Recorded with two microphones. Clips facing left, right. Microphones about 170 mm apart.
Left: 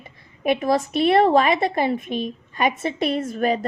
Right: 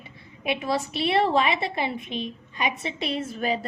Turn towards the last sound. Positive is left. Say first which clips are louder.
# left 5 dB
turn(degrees=45)  # may be behind; listen again after turning